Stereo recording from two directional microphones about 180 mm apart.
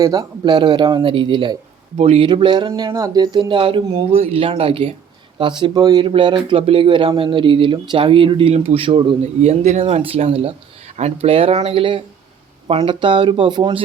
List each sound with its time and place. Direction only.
0.0 s speech: 20° right (ahead or behind)